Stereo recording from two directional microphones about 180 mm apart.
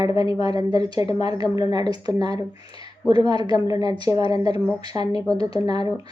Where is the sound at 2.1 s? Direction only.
30° left (ahead or behind).